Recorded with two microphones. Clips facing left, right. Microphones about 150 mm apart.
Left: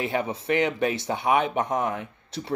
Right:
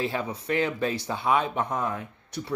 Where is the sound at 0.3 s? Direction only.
25° left (ahead or behind).